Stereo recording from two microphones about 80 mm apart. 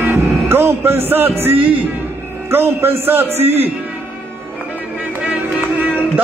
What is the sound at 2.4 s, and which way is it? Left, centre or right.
Music, right.